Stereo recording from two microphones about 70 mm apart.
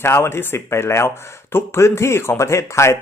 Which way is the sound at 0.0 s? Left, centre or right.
Left.